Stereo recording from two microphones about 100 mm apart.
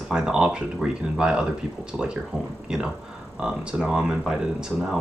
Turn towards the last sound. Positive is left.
turn(degrees=-5)  # may be behind; listen again after turning